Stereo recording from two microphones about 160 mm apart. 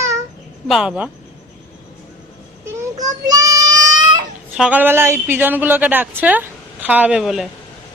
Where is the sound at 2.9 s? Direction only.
25° right (ahead or behind).